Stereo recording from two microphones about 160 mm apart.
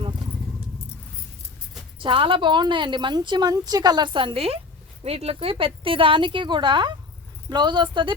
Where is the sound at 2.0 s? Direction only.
35° right (ahead or behind).